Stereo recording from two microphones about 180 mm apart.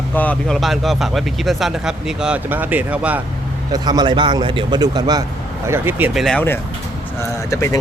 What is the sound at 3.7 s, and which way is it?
A man's voice, 25° right (ahead or behind).